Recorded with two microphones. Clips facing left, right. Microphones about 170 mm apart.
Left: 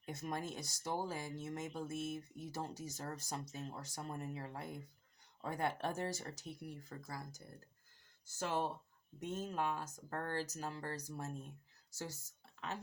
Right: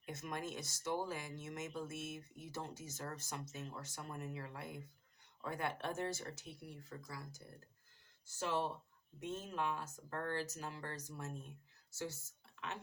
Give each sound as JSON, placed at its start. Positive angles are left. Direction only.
{"t": 0.0, "sound": "speech", "side_deg": 35}
{"t": 8.4, "sound": "speech", "side_deg": 45}